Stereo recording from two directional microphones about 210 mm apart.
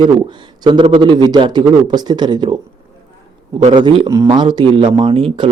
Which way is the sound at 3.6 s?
25° right (ahead or behind).